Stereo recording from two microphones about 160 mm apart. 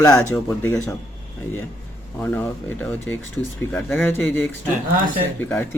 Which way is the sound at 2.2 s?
10° left (ahead or behind).